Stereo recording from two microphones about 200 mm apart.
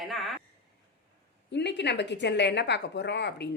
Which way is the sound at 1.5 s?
60° left (ahead or behind).